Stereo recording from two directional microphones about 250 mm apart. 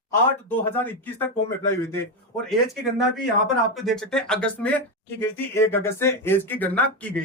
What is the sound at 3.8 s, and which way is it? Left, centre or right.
Speech, centre.